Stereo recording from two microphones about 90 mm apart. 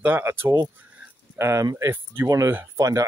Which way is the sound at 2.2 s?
35° right (ahead or behind).